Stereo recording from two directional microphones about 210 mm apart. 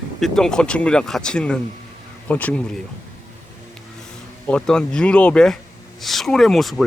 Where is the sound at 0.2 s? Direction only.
5° left (ahead or behind).